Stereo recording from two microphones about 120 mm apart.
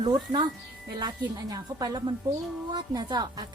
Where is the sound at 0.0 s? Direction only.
35° right (ahead or behind).